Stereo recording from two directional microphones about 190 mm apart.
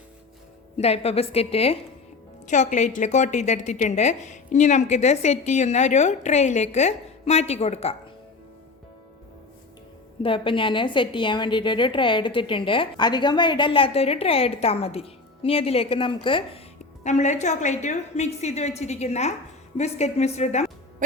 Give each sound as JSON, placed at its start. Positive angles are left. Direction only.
{"t": 0.8, "sound": "a woman's voice", "side_deg": 30}
{"t": 10.2, "sound": "a woman's voice", "side_deg": 25}